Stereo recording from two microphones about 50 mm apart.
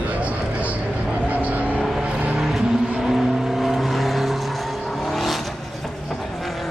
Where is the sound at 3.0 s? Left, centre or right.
Centre.